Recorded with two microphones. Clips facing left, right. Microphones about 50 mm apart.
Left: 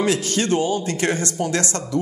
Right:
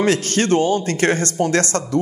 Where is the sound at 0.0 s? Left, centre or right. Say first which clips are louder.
Right 3 dB; right.